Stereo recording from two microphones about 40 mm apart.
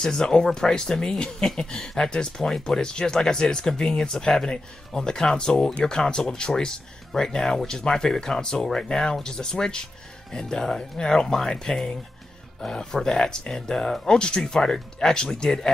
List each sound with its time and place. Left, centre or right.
0.0 s speech: centre